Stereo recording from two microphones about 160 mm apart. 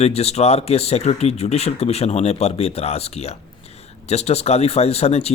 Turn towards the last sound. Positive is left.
turn(degrees=40)  # may be behind; listen again after turning